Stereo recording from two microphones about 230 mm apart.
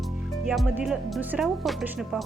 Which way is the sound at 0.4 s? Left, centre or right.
Centre.